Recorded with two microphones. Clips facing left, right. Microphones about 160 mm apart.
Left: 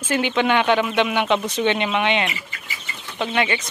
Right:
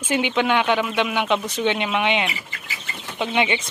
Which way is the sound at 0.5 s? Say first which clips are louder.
Left 2 dB; 5° right (ahead or behind).